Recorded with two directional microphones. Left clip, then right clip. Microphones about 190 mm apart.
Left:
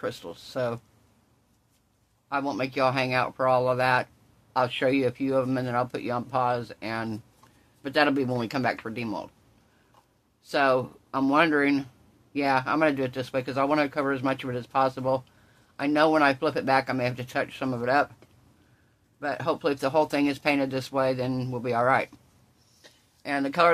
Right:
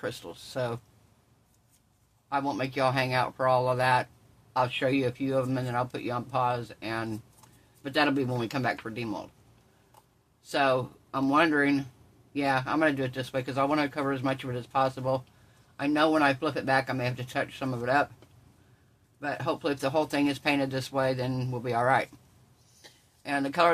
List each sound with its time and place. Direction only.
0.0 s speech: 20° left (ahead or behind)
2.2 s speech: 25° left (ahead or behind)
10.4 s speech: 25° left (ahead or behind)
19.1 s speech: 25° left (ahead or behind)
23.2 s speech: 25° left (ahead or behind)